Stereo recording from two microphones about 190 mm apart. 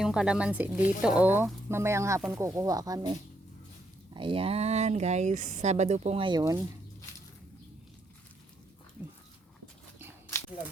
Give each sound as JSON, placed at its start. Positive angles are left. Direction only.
{"t": 0.0, "sound": "speech", "side_deg": -5}